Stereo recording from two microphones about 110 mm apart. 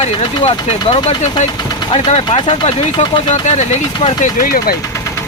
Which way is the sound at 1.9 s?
60° left (ahead or behind).